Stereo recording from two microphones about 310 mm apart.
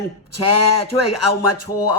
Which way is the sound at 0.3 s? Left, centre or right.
Left.